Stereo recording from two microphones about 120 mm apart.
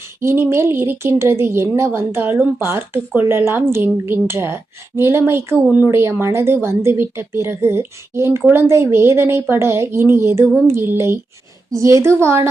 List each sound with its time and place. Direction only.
0.2 s a woman's voice: 20° right (ahead or behind)